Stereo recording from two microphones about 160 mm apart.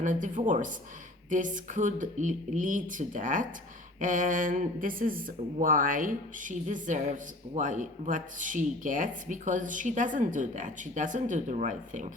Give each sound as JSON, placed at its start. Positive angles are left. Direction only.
{"t": 0.0, "sound": "speech", "side_deg": -55}